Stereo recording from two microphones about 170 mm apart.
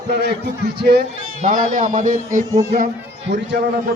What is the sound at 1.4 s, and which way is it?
A man's voice, 55° right (ahead or behind).